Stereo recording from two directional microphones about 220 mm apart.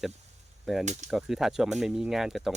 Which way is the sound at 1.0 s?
Centre (ahead or behind).